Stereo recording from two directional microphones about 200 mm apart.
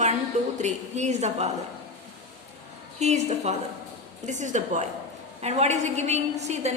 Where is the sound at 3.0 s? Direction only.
35° right (ahead or behind).